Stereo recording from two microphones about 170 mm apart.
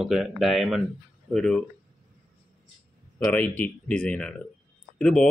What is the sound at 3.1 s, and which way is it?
Speech, 5° left (ahead or behind).